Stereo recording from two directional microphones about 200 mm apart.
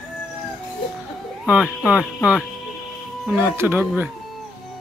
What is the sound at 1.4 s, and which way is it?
Speech, 5° right (ahead or behind).